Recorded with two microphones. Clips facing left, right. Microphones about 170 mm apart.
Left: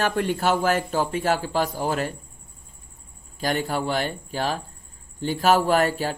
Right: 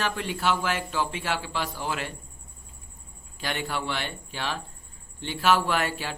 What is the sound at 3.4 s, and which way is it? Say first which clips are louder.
A man's voice: left 6 dB; 40° left (ahead or behind).